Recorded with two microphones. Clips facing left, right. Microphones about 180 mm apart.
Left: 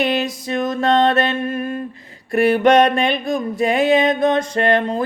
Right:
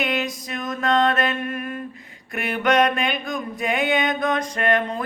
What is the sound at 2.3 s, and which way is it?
Mantra, 30° left (ahead or behind).